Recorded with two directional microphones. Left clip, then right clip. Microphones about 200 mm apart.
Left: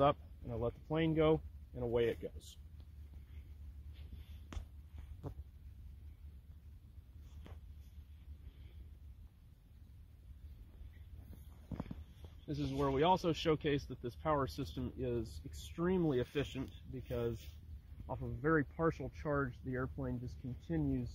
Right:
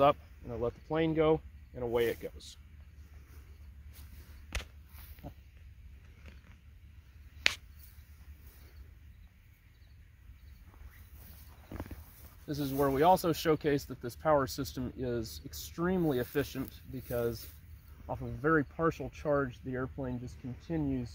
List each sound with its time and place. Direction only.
0.5 s speech: 35° left (ahead or behind); by 2.4 s 50° left (ahead or behind)
12.4 s speech: 55° right (ahead or behind)
15.7 s speech: 45° right (ahead or behind); by 21.1 s 5° right (ahead or behind)